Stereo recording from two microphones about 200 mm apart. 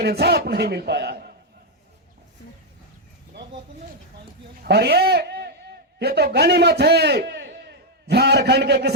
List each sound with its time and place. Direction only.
0.0 s a man's voice: 55° right (ahead or behind)
4.6 s a man's voice: 55° right (ahead or behind)